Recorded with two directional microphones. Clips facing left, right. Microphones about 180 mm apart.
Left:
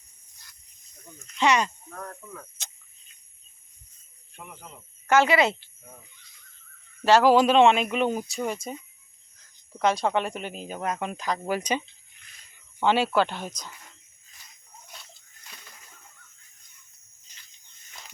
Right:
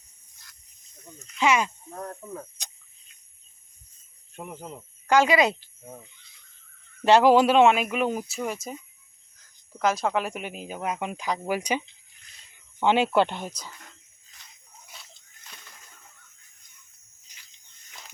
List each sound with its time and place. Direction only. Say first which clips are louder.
1.4 s speech: even; 5° right (ahead or behind)
1.9 s speech: right 4 dB; 30° right (ahead or behind)
4.4 s cricket: right 6 dB; 30° right (ahead or behind)
5.0 s speech: even; 15° right (ahead or behind)
7.0 s speech: right 1 dB; 15° right (ahead or behind)
14.9 s a sound: left 1 dB; centre (ahead or behind)